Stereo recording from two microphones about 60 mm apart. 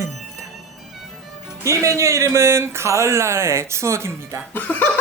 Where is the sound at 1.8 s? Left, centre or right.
Right.